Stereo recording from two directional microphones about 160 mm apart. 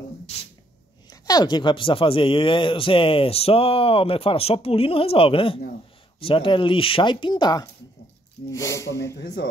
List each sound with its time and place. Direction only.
1.1 s speech: 25° left (ahead or behind)
9.1 s speech: 90° left